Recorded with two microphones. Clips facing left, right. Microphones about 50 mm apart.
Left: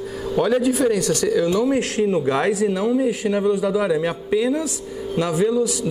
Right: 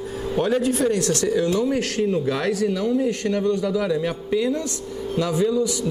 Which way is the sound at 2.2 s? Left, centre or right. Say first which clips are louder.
Left 3 dB; left.